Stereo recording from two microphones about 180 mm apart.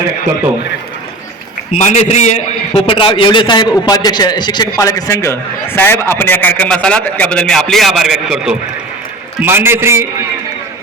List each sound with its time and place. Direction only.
1.7 s a man's voice: 40° left (ahead or behind); by 10.1 s 15° right (ahead or behind)